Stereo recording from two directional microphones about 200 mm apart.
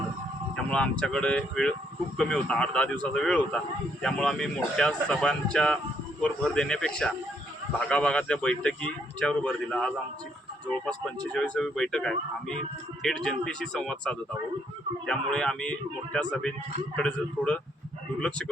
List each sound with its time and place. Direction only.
0.5 s a man's voice: 5° left (ahead or behind)